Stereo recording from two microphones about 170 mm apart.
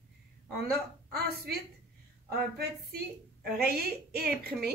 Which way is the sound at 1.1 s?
70° right (ahead or behind).